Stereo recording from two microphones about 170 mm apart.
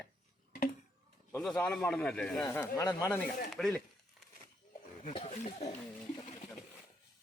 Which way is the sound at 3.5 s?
Centre (ahead or behind).